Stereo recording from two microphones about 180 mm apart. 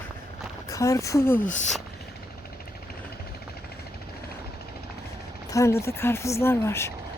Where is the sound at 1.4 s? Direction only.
45° left (ahead or behind).